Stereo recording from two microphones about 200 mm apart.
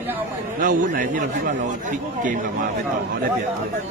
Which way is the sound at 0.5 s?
40° right (ahead or behind).